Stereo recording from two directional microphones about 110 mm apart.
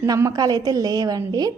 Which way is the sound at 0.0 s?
30° right (ahead or behind).